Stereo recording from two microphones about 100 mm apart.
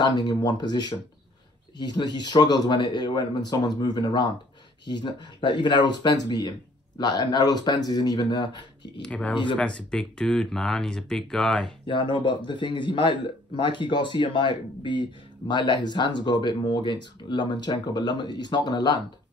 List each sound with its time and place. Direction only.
0.0 s a man's voice: 45° left (ahead or behind)
9.0 s speech: 15° left (ahead or behind)
9.3 s a man's voice: 55° left (ahead or behind)
9.6 s speech: 10° left (ahead or behind)
11.8 s a man's voice: 55° left (ahead or behind)